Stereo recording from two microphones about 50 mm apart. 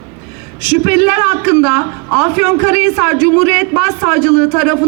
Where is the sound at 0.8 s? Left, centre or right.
Right.